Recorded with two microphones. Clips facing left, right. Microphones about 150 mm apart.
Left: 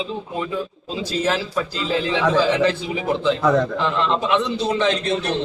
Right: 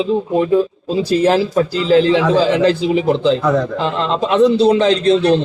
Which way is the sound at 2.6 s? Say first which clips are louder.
Right 7 dB; 30° right (ahead or behind).